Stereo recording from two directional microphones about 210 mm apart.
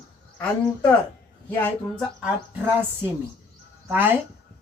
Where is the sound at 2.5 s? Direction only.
10° right (ahead or behind).